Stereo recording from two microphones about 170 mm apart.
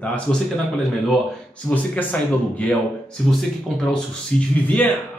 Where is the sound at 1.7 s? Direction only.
10° left (ahead or behind).